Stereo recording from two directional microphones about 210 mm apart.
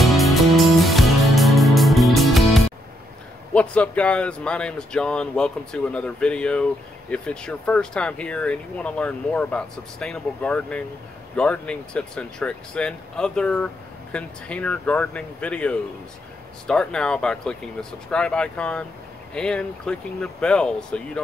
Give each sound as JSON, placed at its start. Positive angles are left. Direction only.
{"t": 0.0, "sound": "music", "side_deg": 0}
{"t": 3.5, "sound": "speech", "side_deg": 5}